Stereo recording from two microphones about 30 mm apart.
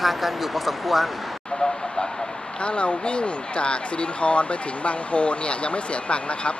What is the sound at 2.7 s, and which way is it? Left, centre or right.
Speech, left.